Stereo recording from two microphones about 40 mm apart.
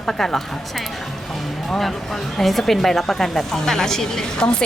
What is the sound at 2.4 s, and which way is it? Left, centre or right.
A woman's voice, centre.